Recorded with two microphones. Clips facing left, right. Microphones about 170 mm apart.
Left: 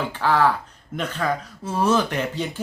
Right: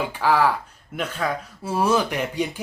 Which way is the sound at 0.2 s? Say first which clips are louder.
Even; 10° right (ahead or behind).